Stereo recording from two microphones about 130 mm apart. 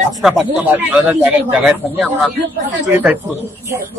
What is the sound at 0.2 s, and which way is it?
A man's voice, 5° right (ahead or behind).